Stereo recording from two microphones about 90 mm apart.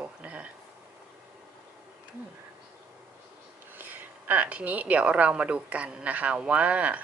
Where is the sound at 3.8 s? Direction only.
20° right (ahead or behind).